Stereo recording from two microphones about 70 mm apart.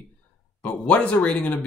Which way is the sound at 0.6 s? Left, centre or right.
Left.